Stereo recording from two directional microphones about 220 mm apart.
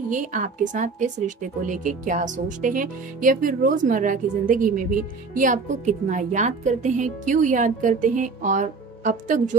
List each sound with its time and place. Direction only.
0.1 s speech: 35° right (ahead or behind)